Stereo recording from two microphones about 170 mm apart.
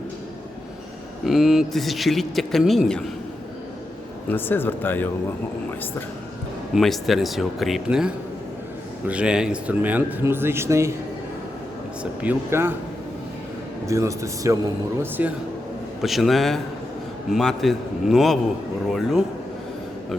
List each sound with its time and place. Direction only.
1.2 s speech: centre (ahead or behind)
4.3 s speech: 10° left (ahead or behind)
6.7 s speech: centre (ahead or behind); by 10.9 s 15° right (ahead or behind)
12.2 s speech: 10° right (ahead or behind)
13.8 s speech: 20° right (ahead or behind); by 19.2 s centre (ahead or behind)